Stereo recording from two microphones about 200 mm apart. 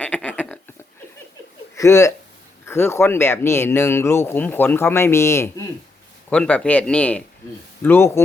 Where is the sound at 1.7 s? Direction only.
15° left (ahead or behind).